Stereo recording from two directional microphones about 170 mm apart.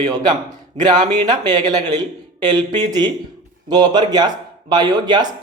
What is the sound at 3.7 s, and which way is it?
Speech, 25° right (ahead or behind).